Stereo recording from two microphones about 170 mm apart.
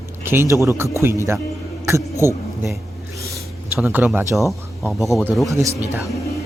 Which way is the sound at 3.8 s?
5° right (ahead or behind).